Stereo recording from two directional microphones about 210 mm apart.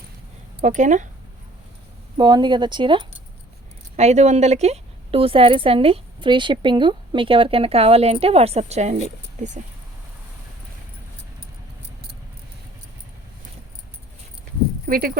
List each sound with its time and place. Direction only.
0.6 s speech: 35° right (ahead or behind)
2.1 s a woman's voice: 20° right (ahead or behind)
14.8 s speech: 45° right (ahead or behind)